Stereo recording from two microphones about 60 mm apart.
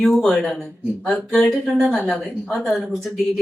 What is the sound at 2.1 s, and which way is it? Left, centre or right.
A woman's voice, centre.